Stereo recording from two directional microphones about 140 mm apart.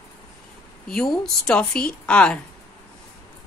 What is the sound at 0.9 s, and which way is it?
A woman's voice, centre (ahead or behind).